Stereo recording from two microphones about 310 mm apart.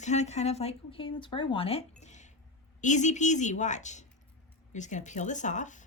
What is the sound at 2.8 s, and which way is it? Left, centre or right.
Speech, left.